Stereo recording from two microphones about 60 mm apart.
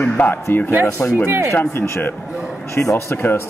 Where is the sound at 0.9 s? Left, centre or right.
Left.